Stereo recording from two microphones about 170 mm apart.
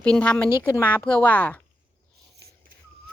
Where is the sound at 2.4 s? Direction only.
70° right (ahead or behind).